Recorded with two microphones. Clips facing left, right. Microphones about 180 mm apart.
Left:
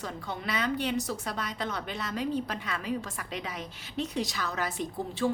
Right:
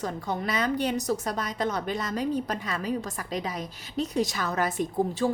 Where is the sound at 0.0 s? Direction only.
40° right (ahead or behind).